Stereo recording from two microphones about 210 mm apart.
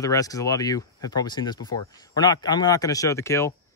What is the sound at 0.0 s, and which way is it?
Speech, 15° left (ahead or behind).